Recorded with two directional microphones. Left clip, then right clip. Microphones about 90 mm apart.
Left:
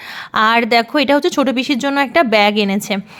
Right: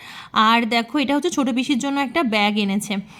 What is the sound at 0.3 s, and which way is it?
A woman's voice, 35° left (ahead or behind).